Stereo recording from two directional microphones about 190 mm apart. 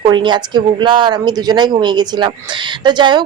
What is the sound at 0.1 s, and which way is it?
A woman's voice, 25° right (ahead or behind).